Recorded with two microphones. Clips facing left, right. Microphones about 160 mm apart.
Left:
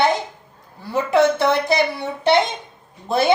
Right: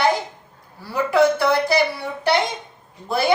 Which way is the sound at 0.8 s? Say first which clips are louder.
Left 1 dB; 20° left (ahead or behind).